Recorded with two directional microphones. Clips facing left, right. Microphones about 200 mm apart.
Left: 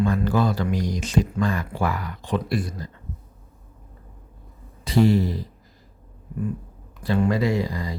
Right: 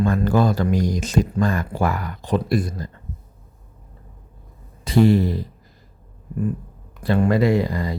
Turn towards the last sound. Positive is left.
turn(degrees=-55)  # may be behind; listen again after turning